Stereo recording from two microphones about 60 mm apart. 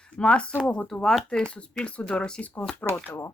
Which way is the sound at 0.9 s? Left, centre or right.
Centre.